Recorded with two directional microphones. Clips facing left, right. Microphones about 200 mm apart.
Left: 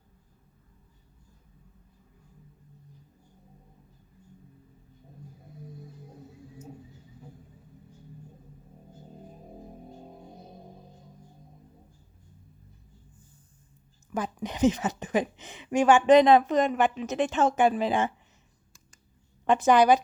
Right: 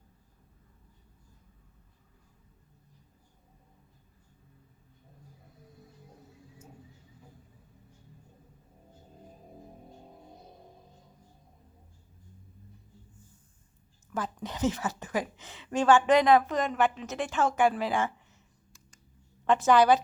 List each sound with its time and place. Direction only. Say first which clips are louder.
14.1 s a woman's voice: left 3 dB; 15° left (ahead or behind)
19.5 s a woman's voice: left 2 dB; 15° left (ahead or behind)